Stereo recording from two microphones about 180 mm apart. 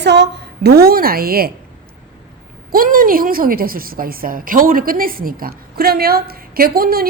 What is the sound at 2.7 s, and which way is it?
A woman's voice, 50° right (ahead or behind).